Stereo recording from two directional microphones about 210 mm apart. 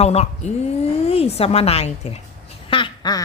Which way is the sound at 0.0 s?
30° left (ahead or behind).